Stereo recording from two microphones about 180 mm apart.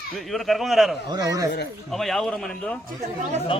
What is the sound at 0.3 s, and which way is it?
Speech, centre (ahead or behind).